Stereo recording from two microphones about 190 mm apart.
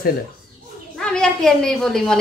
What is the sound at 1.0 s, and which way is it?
A woman's voice, 5° left (ahead or behind).